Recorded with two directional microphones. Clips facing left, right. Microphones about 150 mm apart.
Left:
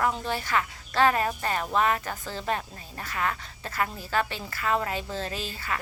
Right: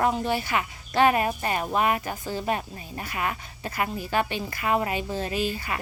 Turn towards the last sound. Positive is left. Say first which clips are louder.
# right 5 dB
turn(degrees=-15)  # may be behind; listen again after turning